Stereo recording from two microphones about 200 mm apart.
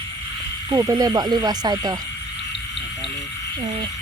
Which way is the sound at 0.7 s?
20° right (ahead or behind).